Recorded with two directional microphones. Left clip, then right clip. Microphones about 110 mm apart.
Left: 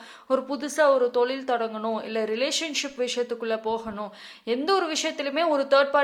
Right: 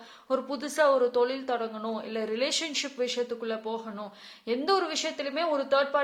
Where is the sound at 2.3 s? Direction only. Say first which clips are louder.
Even; 10° left (ahead or behind).